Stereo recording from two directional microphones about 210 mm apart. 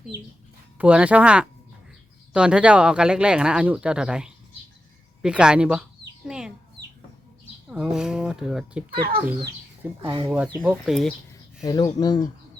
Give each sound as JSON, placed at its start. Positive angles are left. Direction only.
{"t": 0.8, "sound": "speech", "side_deg": -5}
{"t": 6.2, "sound": "chicken", "side_deg": -5}
{"t": 7.7, "sound": "speech", "side_deg": -5}
{"t": 8.9, "sound": "speech", "side_deg": -45}
{"t": 10.0, "sound": "speech", "side_deg": -25}
{"t": 10.2, "sound": "speech", "side_deg": -10}
{"t": 11.6, "sound": "speech", "side_deg": 15}